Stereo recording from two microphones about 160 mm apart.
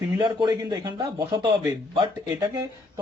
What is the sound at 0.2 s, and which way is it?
Speech, 30° right (ahead or behind).